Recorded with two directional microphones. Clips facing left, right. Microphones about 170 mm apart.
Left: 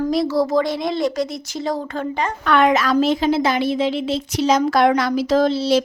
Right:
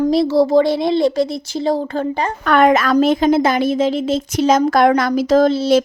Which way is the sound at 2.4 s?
50° right (ahead or behind).